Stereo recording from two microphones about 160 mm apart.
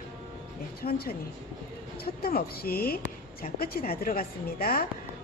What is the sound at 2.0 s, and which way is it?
A woman's voice, 70° left (ahead or behind).